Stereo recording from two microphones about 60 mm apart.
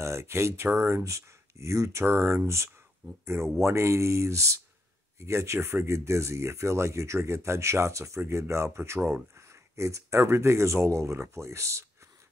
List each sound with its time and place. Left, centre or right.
0.0 s speech: right